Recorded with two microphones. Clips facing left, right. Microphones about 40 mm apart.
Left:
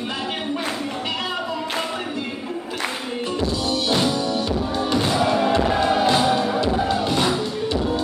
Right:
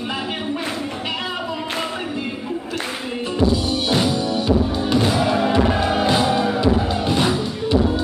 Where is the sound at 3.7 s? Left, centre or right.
Centre.